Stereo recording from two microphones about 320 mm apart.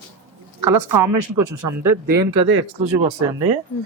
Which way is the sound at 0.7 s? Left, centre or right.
Right.